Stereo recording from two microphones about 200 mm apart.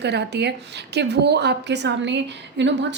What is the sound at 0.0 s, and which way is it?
A woman's voice, 55° right (ahead or behind).